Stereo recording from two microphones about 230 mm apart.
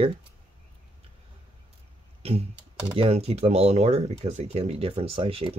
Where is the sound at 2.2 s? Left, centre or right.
Right.